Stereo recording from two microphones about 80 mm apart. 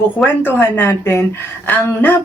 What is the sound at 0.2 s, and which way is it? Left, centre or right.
A woman's voice, left.